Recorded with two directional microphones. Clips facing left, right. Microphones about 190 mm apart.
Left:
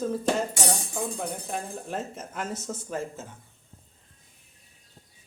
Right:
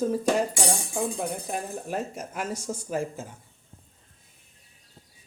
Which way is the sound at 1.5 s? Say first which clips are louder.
Right 2 dB; 10° right (ahead or behind).